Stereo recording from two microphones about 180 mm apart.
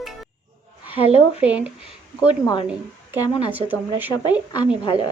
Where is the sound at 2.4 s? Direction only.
20° left (ahead or behind).